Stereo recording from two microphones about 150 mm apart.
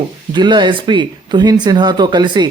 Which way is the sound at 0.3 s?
30° right (ahead or behind).